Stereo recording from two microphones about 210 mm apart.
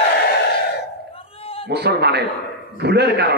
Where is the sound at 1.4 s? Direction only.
25° left (ahead or behind).